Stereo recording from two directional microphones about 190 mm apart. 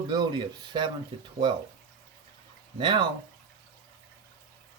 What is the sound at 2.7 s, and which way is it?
Speech, 25° right (ahead or behind).